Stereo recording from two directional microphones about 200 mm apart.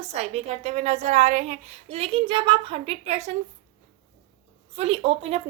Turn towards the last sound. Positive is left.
turn(degrees=-30)  # may be behind; listen again after turning